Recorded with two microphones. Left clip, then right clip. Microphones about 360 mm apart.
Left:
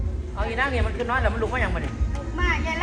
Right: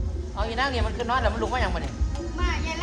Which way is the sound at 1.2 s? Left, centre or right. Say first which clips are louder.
Left 1 dB; right.